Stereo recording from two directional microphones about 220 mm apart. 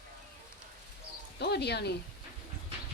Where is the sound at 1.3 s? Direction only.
50° left (ahead or behind).